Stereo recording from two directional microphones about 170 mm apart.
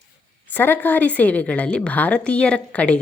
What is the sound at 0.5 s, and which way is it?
A woman's voice, 10° left (ahead or behind).